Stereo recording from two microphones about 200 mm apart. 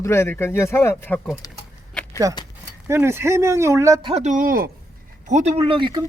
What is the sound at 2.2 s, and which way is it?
Speech, 15° right (ahead or behind).